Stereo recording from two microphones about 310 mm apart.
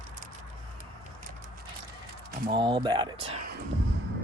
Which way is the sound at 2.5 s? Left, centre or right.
Centre.